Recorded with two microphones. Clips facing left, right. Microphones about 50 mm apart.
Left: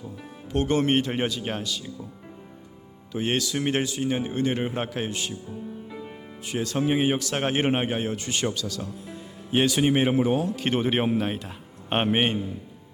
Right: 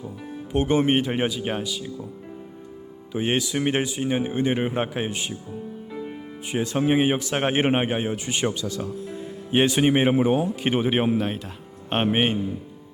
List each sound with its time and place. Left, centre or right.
0.5 s speech: centre
3.1 s speech: centre
5.5 s music: centre
6.5 s speech: centre